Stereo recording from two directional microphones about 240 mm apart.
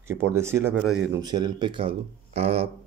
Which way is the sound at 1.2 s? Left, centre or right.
Centre.